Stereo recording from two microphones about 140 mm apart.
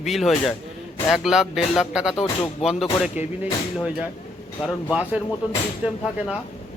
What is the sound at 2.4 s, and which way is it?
Speech, 45° left (ahead or behind).